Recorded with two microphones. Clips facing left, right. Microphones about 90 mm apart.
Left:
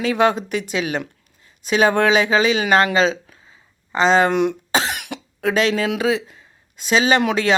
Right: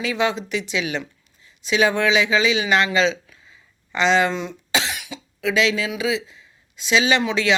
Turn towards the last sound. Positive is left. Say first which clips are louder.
# left 3 dB
turn(degrees=50)  # may be behind; listen again after turning